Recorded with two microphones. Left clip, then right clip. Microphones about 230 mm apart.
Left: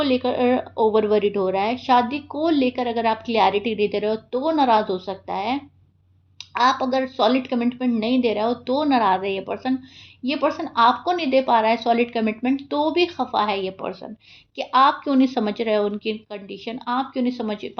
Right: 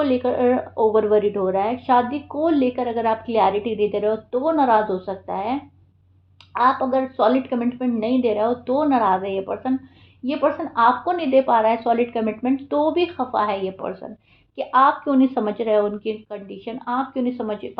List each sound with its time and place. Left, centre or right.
0.0 s a woman's voice: left